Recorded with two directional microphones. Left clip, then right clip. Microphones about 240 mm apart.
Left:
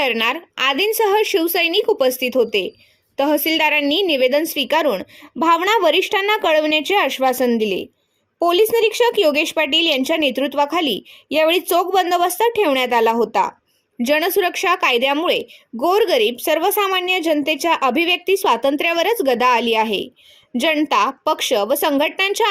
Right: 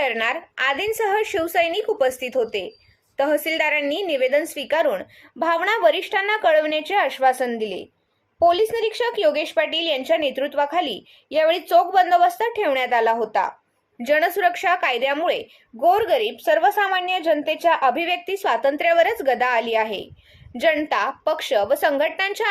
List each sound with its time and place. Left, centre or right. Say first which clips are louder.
0.0 s a woman's voice: left 3 dB; left